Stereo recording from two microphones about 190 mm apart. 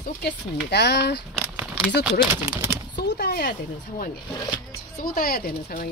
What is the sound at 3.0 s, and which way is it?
Speech, 60° left (ahead or behind).